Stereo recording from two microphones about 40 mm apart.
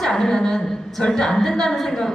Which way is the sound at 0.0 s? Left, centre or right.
Centre.